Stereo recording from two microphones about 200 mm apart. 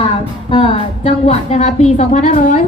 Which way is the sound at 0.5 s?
30° left (ahead or behind).